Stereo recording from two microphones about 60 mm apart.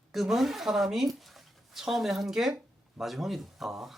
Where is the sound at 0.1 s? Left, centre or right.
Centre.